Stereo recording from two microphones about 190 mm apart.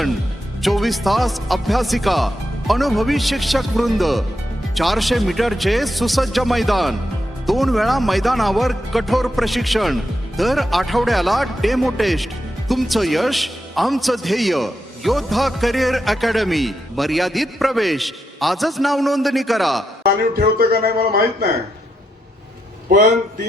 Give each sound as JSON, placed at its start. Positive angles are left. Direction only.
{"t": 0.6, "sound": "speech", "side_deg": 0}
{"t": 20.6, "sound": "speech", "side_deg": -55}